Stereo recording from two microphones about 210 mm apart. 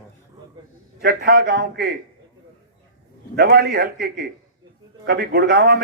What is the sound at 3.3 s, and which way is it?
A man's voice, 50° right (ahead or behind).